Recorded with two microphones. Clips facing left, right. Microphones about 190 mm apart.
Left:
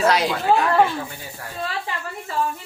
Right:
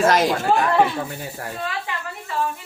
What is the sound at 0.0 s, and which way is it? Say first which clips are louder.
Speech: right 2 dB; 45° right (ahead or behind).